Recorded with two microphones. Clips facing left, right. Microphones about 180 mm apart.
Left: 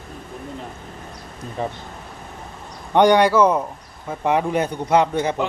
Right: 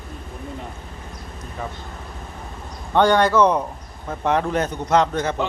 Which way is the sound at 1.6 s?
30° left (ahead or behind).